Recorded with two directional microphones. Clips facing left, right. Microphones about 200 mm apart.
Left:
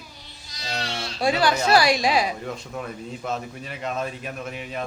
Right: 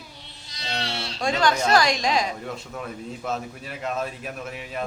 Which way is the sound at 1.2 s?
10° left (ahead or behind).